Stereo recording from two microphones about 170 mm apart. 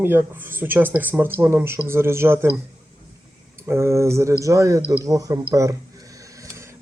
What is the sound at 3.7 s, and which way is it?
A man's voice, 15° right (ahead or behind).